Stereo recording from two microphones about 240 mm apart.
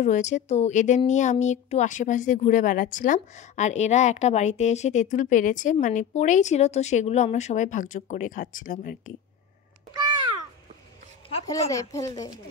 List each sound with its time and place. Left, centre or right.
0.0 s speech: left
11.2 s a woman's voice: centre